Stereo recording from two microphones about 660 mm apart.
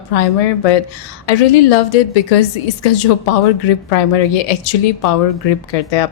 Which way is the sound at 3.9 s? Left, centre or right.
Left.